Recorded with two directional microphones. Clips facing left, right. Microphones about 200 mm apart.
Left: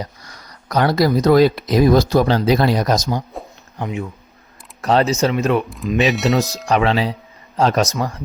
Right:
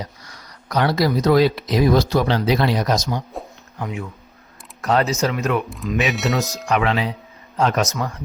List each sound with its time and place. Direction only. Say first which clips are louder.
0.7 s speech: left 3 dB; 45° left (ahead or behind)
3.8 s speech: left 3 dB; 25° left (ahead or behind)
5.6 s speech: left 4 dB; centre (ahead or behind)
6.4 s speech: left 3 dB; 30° left (ahead or behind)